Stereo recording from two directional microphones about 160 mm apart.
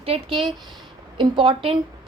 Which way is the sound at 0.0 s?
35° right (ahead or behind).